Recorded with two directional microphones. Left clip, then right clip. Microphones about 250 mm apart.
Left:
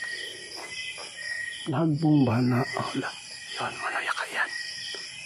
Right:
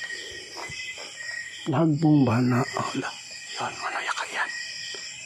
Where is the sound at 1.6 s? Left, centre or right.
Centre.